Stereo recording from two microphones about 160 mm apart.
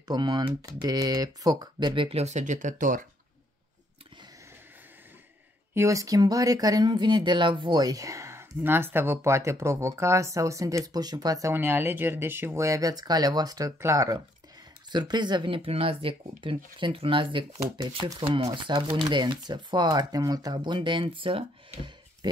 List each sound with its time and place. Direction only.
0.1 s speech: 25° right (ahead or behind); by 3.1 s 55° right (ahead or behind)
5.8 s speech: 20° right (ahead or behind)